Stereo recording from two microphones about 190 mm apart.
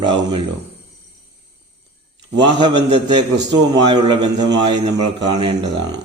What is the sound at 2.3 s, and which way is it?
A man's voice, 25° right (ahead or behind).